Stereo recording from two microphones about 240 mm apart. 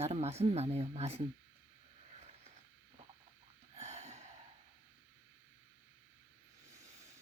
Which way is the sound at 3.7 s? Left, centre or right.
Right.